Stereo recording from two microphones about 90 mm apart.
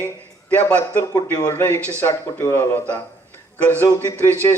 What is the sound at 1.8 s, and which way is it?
Speech, 30° right (ahead or behind).